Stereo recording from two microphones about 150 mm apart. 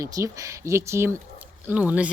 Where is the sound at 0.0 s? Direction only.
20° right (ahead or behind).